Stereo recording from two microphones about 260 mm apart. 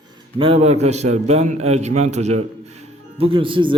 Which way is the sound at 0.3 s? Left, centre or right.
Right.